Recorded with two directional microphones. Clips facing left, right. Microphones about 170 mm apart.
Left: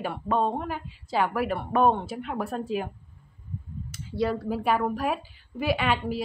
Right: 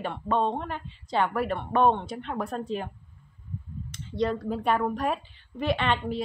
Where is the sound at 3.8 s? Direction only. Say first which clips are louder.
Even; 5° left (ahead or behind).